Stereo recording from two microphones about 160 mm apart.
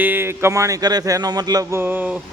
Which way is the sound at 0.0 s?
15° right (ahead or behind).